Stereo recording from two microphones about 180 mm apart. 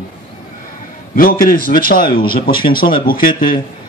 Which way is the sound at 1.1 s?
55° left (ahead or behind).